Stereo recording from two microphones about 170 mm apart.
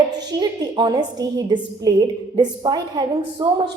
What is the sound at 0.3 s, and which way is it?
A woman's voice, 25° right (ahead or behind).